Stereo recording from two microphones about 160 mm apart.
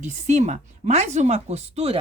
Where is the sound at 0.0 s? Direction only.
45° right (ahead or behind).